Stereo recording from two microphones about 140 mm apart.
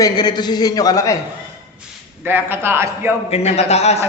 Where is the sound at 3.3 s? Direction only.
50° left (ahead or behind).